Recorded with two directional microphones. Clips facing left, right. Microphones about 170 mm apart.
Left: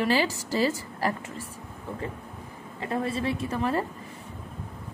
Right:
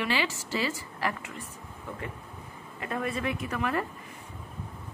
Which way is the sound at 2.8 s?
30° left (ahead or behind).